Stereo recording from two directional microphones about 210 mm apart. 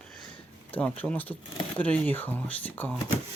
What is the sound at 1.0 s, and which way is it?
Speech, 5° left (ahead or behind).